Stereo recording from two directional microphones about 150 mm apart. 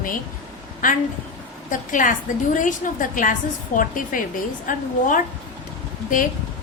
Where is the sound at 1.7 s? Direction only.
60° left (ahead or behind).